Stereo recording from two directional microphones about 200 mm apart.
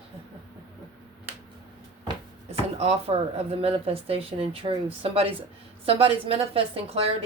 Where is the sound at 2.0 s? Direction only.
30° right (ahead or behind).